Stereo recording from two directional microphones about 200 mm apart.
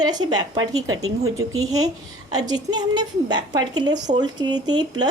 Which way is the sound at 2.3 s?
20° right (ahead or behind).